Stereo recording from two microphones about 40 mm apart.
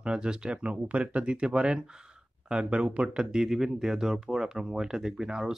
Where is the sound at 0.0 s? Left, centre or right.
Right.